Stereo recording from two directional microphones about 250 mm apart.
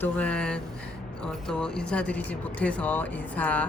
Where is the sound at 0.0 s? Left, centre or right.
Centre.